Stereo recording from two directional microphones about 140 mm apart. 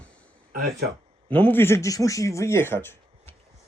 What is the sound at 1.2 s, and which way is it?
Speech, 10° left (ahead or behind).